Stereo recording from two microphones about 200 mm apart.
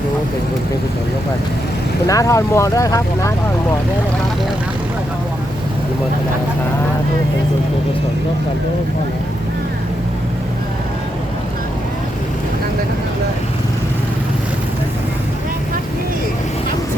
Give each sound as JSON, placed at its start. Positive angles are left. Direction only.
{"t": 2.0, "sound": "speech", "side_deg": 15}